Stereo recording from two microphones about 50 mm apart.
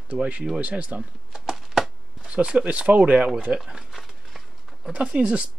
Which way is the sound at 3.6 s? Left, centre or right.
Centre.